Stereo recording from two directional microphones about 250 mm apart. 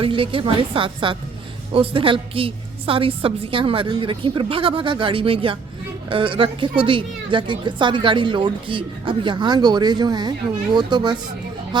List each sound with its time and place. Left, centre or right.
0.0 s a woman's voice: right